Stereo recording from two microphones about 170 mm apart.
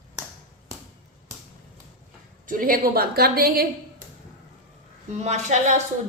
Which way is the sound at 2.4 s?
55° right (ahead or behind).